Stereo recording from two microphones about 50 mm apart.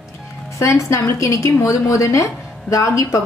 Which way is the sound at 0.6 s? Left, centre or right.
Left.